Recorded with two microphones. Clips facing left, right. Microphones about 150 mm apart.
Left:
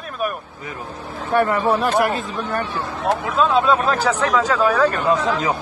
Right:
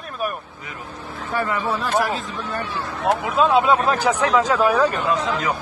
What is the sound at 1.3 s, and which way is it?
Speech, 55° left (ahead or behind).